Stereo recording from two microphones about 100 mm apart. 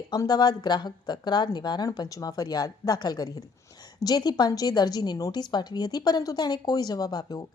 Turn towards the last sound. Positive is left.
turn(degrees=40)  # may be behind; listen again after turning